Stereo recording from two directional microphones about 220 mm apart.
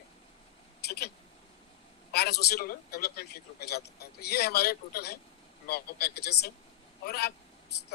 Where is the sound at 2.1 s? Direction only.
45° left (ahead or behind).